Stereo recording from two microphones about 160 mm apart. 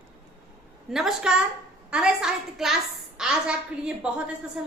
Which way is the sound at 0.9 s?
Centre (ahead or behind).